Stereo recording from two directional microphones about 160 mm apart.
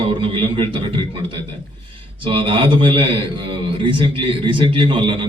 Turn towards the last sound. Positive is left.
turn(degrees=-30)  # may be behind; listen again after turning